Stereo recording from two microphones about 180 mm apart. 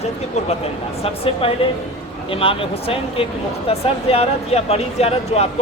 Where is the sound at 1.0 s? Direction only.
30° left (ahead or behind).